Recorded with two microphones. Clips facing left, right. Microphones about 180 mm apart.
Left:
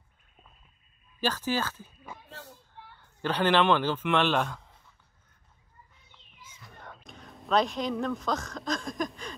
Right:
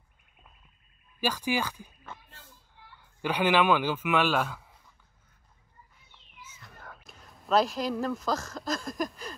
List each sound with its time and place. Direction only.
1.2 s speech: 10° right (ahead or behind)
2.2 s a sound: 75° left (ahead or behind)
3.0 s speech: 10° right (ahead or behind)
6.5 s speech: 5° right (ahead or behind)